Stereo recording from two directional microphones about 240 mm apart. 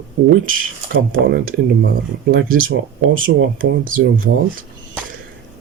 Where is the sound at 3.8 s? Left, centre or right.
Right.